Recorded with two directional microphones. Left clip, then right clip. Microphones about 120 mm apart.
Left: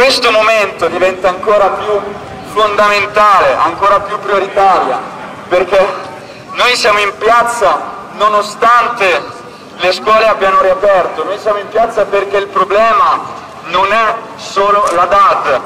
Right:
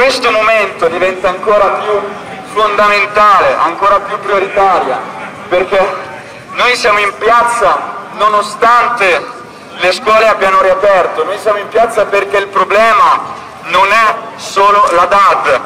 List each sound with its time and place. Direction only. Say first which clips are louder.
0.0 s a man's voice: left 1 dB; 15° left (ahead or behind)
2.5 s a man's voice: even; 10° left (ahead or behind); by 15.6 s 15° right (ahead or behind)